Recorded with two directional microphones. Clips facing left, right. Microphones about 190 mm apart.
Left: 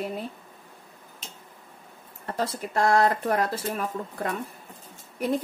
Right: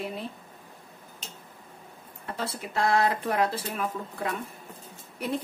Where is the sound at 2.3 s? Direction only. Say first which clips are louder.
Left 4 dB; 45° left (ahead or behind).